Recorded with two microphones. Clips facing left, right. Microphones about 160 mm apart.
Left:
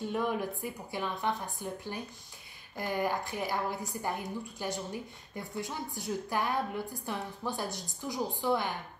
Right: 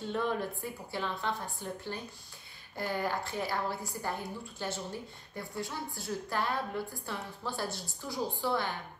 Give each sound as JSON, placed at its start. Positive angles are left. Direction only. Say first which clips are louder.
{"t": 0.0, "sound": "a woman's voice", "louder": "left 1 dB", "side_deg": 10}